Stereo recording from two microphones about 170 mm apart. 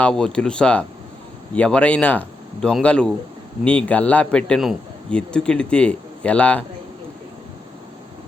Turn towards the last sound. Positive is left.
turn(degrees=10)  # may be behind; listen again after turning